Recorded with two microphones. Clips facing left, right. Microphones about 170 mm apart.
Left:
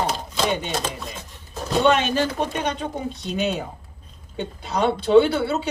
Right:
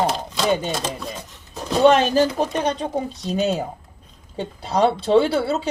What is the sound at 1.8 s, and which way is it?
Speech, 35° right (ahead or behind).